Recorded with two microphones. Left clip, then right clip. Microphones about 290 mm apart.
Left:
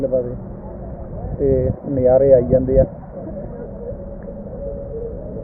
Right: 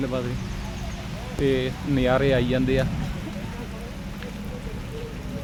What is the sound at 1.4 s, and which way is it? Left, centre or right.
Speech, right.